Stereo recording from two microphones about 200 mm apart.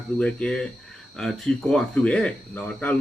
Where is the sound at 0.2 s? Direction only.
5° left (ahead or behind).